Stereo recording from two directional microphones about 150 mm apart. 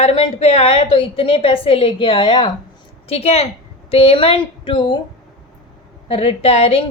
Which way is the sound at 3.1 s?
45° left (ahead or behind).